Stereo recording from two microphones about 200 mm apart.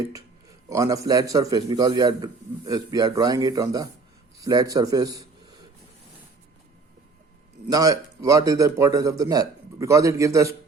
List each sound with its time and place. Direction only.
0.7 s a man's voice: 15° right (ahead or behind)
7.7 s speech: 20° right (ahead or behind)